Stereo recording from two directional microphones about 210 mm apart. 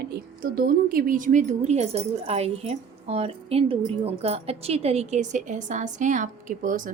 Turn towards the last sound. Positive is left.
turn(degrees=-40)  # may be behind; listen again after turning